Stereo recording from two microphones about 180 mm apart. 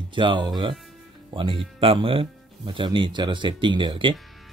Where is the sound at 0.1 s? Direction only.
25° right (ahead or behind).